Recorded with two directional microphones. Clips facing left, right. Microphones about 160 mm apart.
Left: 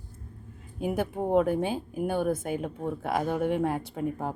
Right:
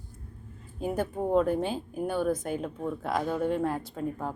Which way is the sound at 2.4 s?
10° left (ahead or behind).